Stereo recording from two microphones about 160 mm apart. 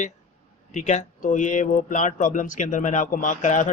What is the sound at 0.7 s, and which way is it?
Speech, 45° left (ahead or behind).